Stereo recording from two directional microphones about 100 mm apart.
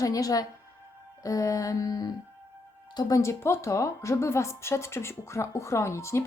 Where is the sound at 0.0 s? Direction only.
35° left (ahead or behind).